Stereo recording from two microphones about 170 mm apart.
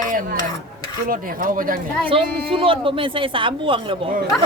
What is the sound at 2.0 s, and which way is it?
A woman's voice, 35° right (ahead or behind).